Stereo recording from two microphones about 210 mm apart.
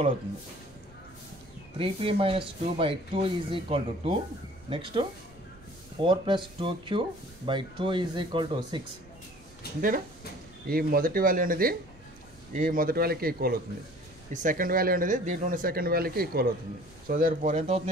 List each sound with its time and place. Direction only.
1.8 s speech: 25° right (ahead or behind)
9.8 s speech: 40° right (ahead or behind)